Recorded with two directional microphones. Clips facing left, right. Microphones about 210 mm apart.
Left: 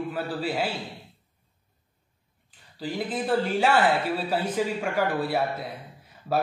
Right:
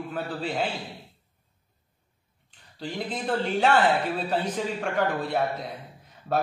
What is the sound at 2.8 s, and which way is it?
A man's voice, 5° left (ahead or behind).